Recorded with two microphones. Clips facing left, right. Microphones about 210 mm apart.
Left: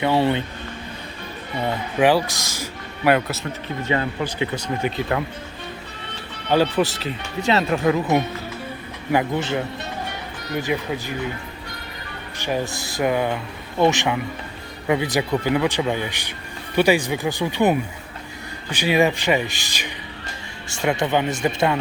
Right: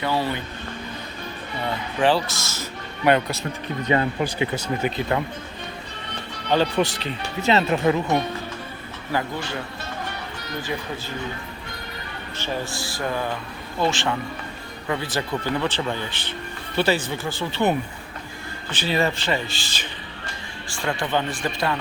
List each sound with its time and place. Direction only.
0.0 s speech: 25° left (ahead or behind)
2.0 s speech: 10° left (ahead or behind)
4.2 s speech: 15° right (ahead or behind)
6.5 s speech: 5° left (ahead or behind)
9.1 s speech: 20° left (ahead or behind)
10.6 s speech: 15° left (ahead or behind)
12.4 s speech: 15° left (ahead or behind)